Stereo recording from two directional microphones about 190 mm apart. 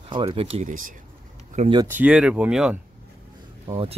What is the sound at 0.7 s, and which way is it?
Speech, 45° right (ahead or behind).